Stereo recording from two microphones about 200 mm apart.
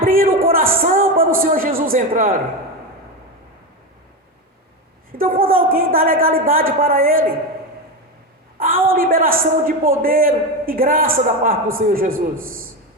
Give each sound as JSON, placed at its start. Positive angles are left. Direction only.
{"t": 0.0, "sound": "a sound", "side_deg": -45}
{"t": 1.4, "sound": "a man's voice", "side_deg": -45}
{"t": 5.1, "sound": "a man's voice", "side_deg": -45}
{"t": 8.5, "sound": "a man's voice", "side_deg": -45}